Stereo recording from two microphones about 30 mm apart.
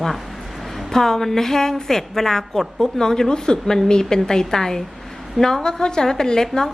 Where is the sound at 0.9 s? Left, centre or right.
Centre.